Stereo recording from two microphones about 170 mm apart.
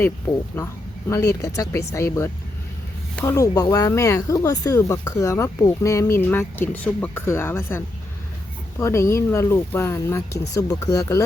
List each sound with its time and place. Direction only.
1.1 s speech: 20° left (ahead or behind)